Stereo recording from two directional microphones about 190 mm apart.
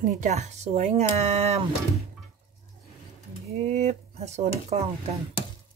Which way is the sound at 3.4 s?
35° right (ahead or behind).